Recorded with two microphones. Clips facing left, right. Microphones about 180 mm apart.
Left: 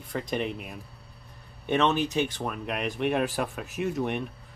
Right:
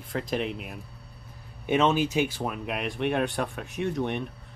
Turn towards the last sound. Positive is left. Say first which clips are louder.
# even
turn(degrees=0)  # may be behind; listen again after turning